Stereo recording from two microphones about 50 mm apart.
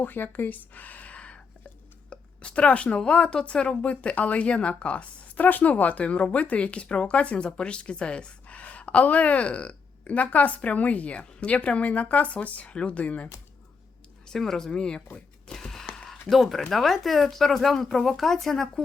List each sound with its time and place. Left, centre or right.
0.0 s speech: left
14.3 s speech: centre
15.4 s a sound: centre
16.3 s speech: centre